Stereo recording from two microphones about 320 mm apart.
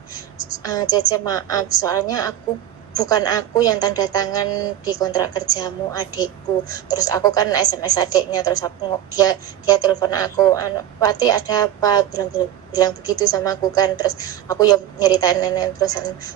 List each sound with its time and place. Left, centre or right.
0.6 s a woman's voice: centre